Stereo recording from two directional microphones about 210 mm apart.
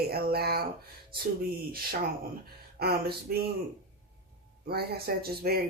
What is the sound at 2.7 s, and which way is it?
Speech, 50° right (ahead or behind).